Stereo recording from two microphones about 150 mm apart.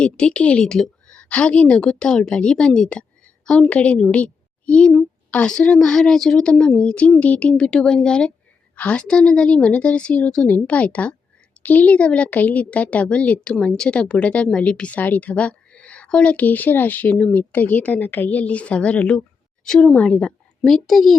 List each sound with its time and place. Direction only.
0.0 s a woman's voice: 5° left (ahead or behind)